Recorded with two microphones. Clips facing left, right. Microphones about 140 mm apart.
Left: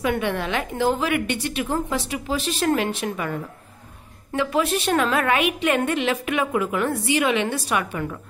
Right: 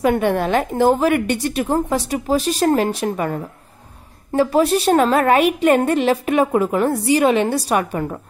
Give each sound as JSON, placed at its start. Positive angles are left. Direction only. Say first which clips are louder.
{"t": 0.0, "sound": "a woman's voice", "louder": "right 7 dB", "side_deg": -45}